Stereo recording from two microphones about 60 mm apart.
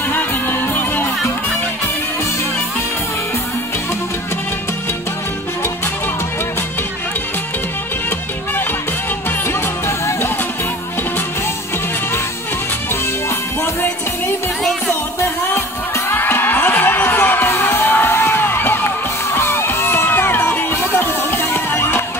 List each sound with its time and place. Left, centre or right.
0.1 s music: left
9.5 s music: left
13.0 s music: left
14.6 s music: centre
16.1 s crowd: left